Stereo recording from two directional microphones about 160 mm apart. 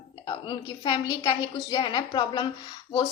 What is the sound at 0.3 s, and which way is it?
A woman's voice, 30° left (ahead or behind).